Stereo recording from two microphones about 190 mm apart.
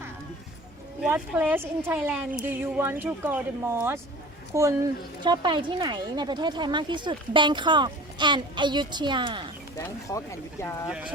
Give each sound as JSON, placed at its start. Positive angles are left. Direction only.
{"t": 1.0, "sound": "speech", "side_deg": -10}
{"t": 5.2, "sound": "speech", "side_deg": -25}
{"t": 9.7, "sound": "speech", "side_deg": 15}